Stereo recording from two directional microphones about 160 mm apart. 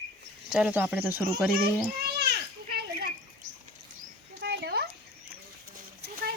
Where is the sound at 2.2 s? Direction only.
80° right.